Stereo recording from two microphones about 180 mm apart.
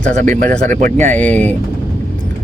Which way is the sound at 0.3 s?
45° right (ahead or behind).